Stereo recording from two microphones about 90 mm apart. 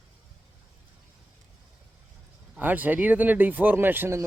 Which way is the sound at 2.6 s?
20° right (ahead or behind).